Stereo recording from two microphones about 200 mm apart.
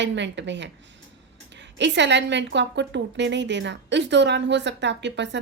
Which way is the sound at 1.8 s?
60° right (ahead or behind).